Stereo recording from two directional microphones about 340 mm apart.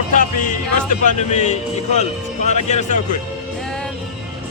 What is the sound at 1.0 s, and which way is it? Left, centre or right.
Speech, centre.